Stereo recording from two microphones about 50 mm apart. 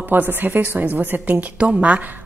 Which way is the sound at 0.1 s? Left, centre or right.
Right.